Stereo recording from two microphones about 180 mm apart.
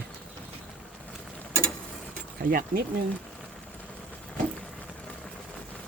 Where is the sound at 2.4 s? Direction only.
50° right (ahead or behind).